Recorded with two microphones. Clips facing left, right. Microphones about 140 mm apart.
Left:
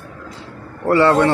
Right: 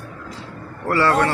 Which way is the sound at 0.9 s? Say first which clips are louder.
Left 5 dB; 25° left (ahead or behind).